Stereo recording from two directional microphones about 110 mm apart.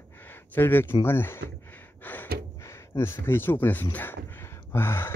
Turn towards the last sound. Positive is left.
turn(degrees=20)  # may be behind; listen again after turning